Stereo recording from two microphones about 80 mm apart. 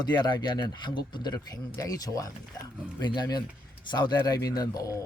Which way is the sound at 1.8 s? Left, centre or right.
Left.